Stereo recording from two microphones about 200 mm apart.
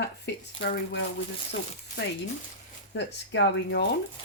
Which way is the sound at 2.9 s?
60° left (ahead or behind).